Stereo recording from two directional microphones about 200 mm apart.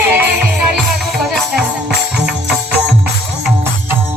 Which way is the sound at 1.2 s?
Centre (ahead or behind).